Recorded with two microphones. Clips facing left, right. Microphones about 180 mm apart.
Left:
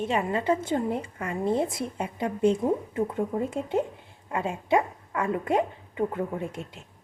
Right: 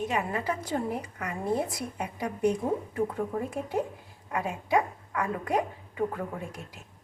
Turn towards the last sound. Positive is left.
turn(degrees=25)  # may be behind; listen again after turning